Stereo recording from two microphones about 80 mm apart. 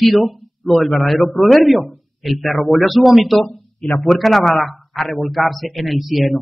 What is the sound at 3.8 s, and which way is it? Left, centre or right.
Speech, centre.